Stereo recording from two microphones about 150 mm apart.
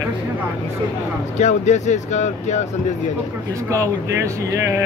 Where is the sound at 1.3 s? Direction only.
50° left (ahead or behind).